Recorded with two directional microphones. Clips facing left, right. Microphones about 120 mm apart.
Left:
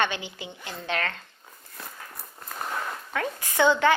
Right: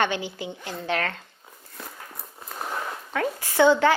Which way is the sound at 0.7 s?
20° right (ahead or behind).